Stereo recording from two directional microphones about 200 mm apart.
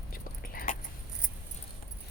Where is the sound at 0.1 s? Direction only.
45° left (ahead or behind).